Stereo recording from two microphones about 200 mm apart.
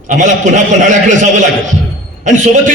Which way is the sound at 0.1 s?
40° right (ahead or behind).